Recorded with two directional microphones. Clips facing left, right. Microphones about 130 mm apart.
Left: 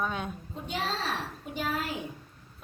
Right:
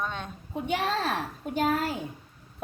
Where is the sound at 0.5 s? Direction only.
60° right (ahead or behind).